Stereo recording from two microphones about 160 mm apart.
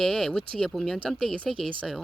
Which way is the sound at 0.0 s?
5° left (ahead or behind).